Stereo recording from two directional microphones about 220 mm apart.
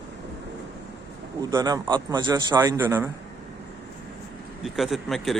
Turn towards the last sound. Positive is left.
turn(degrees=0)  # may be behind; listen again after turning